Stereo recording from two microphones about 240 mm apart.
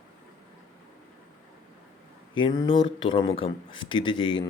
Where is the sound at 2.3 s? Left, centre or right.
Centre.